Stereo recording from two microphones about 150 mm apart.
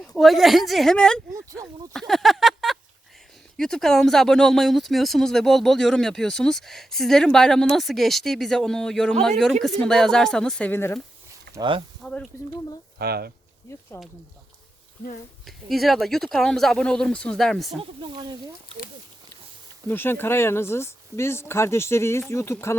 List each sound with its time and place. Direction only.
0.0 s speech: centre (ahead or behind)
1.3 s speech: 20° right (ahead or behind)
1.6 s speech: centre (ahead or behind)
11.5 s a sound: 90° right
12.0 s speech: 5° left (ahead or behind)
13.0 s speech: 90° right
13.7 s a sound: 20° left (ahead or behind)
15.4 s speech: centre (ahead or behind)
17.7 s speech: 30° right (ahead or behind)
19.9 s speech: 15° left (ahead or behind)